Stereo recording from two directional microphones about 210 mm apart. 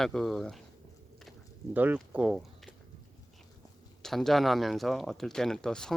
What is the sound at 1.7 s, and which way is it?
Speech, 10° right (ahead or behind).